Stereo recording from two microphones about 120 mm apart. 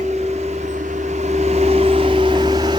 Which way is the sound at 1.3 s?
65° right (ahead or behind).